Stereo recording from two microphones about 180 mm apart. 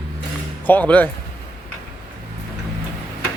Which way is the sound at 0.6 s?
10° left (ahead or behind).